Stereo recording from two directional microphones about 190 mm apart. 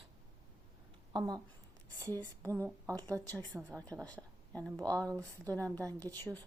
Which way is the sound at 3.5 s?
5° right (ahead or behind).